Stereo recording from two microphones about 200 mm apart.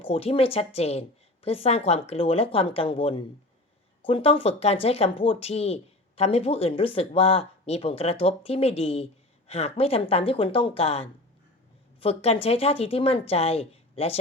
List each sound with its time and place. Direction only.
0.0 s speech: 30° left (ahead or behind)